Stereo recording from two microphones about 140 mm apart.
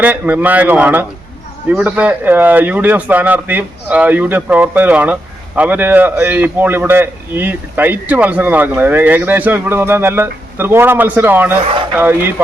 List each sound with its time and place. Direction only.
0.0 s a man's voice: 10° right (ahead or behind)